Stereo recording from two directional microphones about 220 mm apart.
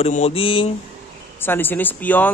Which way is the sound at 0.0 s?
30° left (ahead or behind).